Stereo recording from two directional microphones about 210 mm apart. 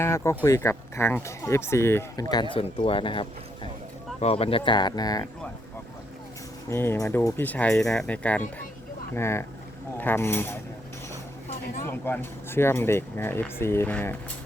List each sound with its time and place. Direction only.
0.0 s speech: 15° left (ahead or behind)
2.3 s speech: 25° left (ahead or behind)
6.7 s speech: 10° left (ahead or behind)
11.9 s speech: 10° left (ahead or behind)